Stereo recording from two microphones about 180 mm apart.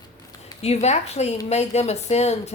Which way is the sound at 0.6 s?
35° left (ahead or behind).